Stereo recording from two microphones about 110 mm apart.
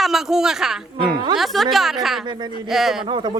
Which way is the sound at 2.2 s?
45° right (ahead or behind).